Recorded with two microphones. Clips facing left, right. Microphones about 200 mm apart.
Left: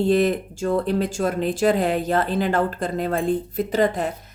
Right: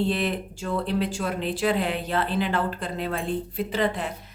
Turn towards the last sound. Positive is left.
turn(degrees=45)  # may be behind; listen again after turning